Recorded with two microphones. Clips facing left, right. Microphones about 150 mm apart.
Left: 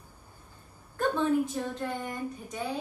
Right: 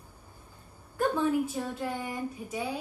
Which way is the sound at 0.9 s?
10° right (ahead or behind).